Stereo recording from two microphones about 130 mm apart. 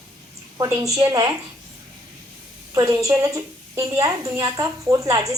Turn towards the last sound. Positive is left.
turn(degrees=-25)  # may be behind; listen again after turning